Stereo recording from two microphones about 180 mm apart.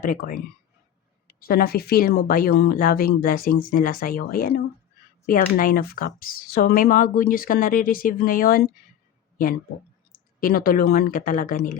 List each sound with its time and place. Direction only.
0.0 s speech: 50° left (ahead or behind)
10.4 s speech: 50° left (ahead or behind)